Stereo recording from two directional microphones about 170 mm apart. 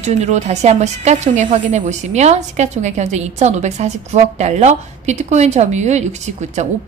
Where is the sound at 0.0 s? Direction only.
40° right (ahead or behind).